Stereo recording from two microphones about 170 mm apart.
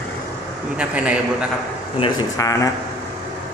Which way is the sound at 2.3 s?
20° left (ahead or behind).